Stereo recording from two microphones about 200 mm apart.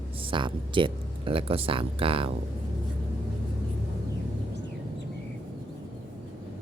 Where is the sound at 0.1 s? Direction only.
25° right (ahead or behind).